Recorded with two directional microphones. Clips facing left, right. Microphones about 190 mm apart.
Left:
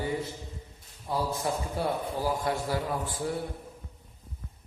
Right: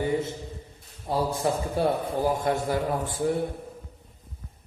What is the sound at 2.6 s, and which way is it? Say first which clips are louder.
Speech: right 4 dB; 45° right (ahead or behind).